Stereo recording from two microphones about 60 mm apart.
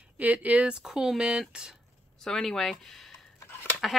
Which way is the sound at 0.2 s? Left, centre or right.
Right.